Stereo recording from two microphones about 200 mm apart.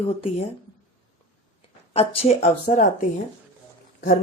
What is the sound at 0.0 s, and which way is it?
Speech, 30° left (ahead or behind).